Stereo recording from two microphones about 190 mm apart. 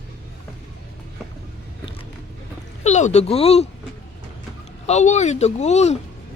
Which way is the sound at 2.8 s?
35° left (ahead or behind).